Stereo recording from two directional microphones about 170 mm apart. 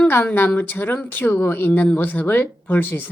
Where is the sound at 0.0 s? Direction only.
10° left (ahead or behind).